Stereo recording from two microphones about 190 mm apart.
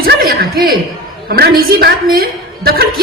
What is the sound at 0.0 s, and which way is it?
Chuckle, 50° right (ahead or behind).